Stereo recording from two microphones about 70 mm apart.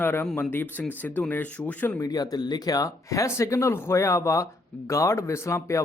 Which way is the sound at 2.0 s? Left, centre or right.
Left.